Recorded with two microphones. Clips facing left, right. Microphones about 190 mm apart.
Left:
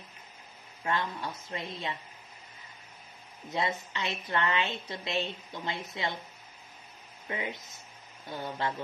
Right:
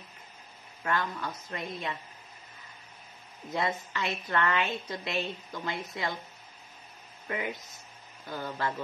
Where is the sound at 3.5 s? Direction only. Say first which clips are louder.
Right 1 dB; 20° left (ahead or behind).